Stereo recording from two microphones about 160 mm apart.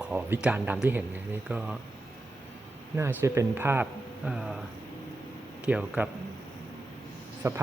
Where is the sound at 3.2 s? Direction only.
15° right (ahead or behind).